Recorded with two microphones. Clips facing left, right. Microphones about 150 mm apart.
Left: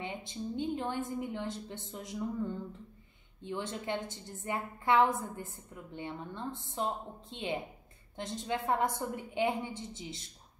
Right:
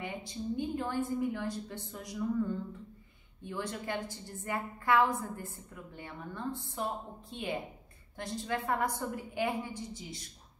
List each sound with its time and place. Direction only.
0.0 s a woman's voice: 20° left (ahead or behind)
3.4 s a woman's voice: 20° left (ahead or behind)